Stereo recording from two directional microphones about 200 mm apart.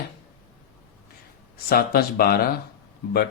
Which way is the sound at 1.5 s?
50° left (ahead or behind).